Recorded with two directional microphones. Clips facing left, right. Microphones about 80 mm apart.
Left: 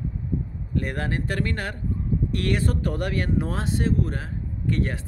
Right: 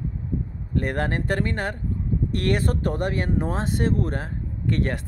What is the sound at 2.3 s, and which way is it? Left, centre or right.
Speech, right.